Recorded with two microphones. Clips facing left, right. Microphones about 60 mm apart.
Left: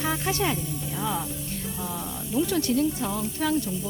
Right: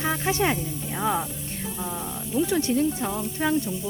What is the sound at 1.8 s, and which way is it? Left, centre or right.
Speech, centre.